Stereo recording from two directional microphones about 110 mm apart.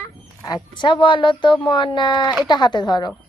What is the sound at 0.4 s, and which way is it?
A child's voice, 40° left (ahead or behind).